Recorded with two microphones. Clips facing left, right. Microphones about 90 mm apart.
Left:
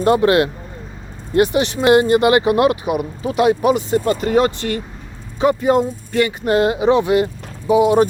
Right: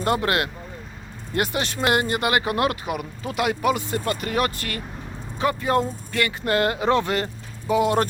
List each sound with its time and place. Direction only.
0.0 s speech: 25° left (ahead or behind)